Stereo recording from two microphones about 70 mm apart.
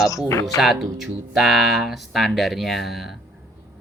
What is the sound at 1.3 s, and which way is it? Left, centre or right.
Speech, centre.